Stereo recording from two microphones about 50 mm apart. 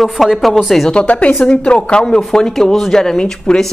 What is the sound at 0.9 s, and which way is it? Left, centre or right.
A woman's voice, left.